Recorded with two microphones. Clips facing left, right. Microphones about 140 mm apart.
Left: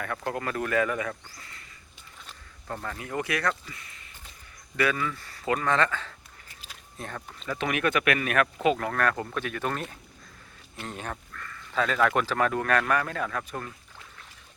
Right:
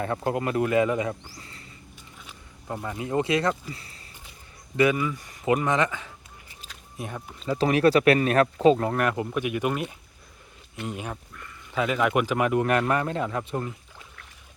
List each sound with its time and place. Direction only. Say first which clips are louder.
0.0 s speech: right 5 dB; 25° right (ahead or behind)
2.2 s speech: right 2 dB; 15° right (ahead or behind); by 4.0 s 35° right (ahead or behind)
4.8 s speech: right 5 dB; 15° right (ahead or behind)
7.5 s speech: right 7 dB; 35° right (ahead or behind)